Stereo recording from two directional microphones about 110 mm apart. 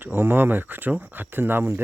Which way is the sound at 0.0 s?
20° right (ahead or behind).